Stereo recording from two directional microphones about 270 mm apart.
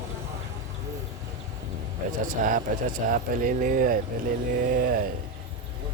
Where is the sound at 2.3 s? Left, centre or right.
Right.